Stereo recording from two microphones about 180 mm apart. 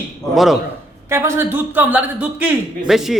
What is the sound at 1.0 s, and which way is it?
A man's voice, 15° right (ahead or behind).